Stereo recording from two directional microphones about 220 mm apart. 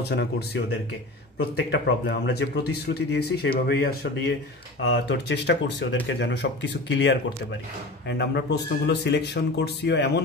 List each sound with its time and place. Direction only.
0.1 s speech: 50° left (ahead or behind)